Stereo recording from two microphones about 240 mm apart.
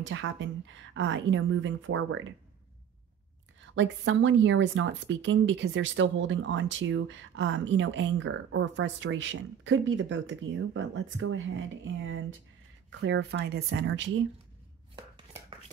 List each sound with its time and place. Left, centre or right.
0.0 s speech: right
3.7 s speech: right